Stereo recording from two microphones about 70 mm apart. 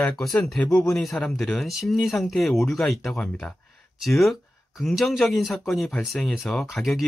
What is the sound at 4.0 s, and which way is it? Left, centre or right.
Speech, centre.